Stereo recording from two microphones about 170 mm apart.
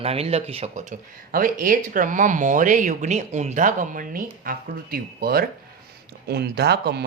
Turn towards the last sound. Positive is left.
turn(degrees=-75)  # may be behind; listen again after turning